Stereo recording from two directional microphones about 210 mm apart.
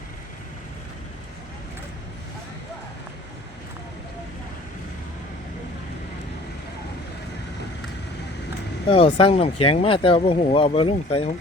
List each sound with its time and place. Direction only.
8.9 s speech: 25° left (ahead or behind)